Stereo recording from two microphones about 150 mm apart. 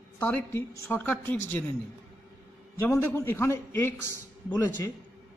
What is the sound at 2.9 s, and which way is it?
Speech, 20° left (ahead or behind).